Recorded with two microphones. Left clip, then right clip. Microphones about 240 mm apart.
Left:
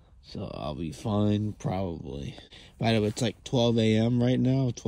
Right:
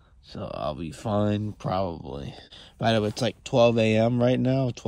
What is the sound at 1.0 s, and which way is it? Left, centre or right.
Speech, centre.